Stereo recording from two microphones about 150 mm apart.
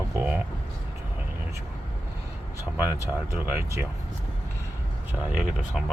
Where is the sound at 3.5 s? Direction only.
15° right (ahead or behind).